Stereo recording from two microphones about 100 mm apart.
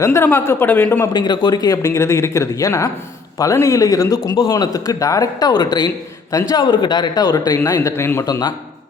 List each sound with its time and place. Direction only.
0.0 s speech: 25° left (ahead or behind)
1.1 s speech: 50° left (ahead or behind); by 8.3 s 25° left (ahead or behind)
8.3 s speech: 45° left (ahead or behind)